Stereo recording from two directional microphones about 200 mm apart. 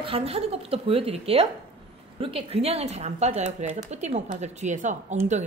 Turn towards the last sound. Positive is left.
turn(degrees=-35)  # may be behind; listen again after turning